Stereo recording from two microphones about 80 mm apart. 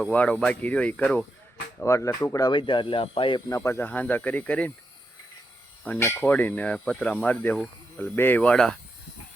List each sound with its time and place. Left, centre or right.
0.1 s speech: centre
1.8 s speech: left
2.5 s speech: left
3.5 s speech: left
3.8 s speech: left
6.0 s speech: left; by 8.8 s centre